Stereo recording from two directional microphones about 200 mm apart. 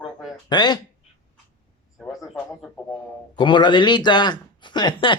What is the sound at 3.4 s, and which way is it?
Speech, 25° left (ahead or behind).